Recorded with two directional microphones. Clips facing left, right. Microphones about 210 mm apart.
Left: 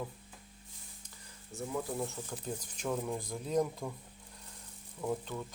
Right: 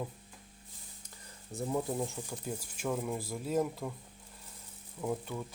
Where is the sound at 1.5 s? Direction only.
35° right (ahead or behind).